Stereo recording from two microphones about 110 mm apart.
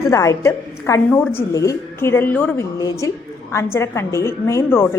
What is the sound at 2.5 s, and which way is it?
A woman's voice, 30° left (ahead or behind).